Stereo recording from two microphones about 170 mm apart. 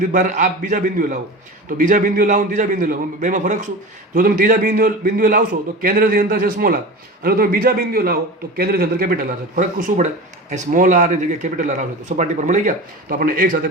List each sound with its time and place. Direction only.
0.0 s a man's voice: 50° right (ahead or behind)